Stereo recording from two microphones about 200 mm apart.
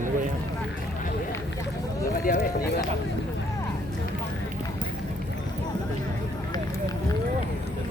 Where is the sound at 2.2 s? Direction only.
45° left (ahead or behind).